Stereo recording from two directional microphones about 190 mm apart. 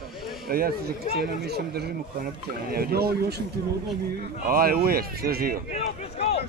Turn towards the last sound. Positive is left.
turn(degrees=35)  # may be behind; listen again after turning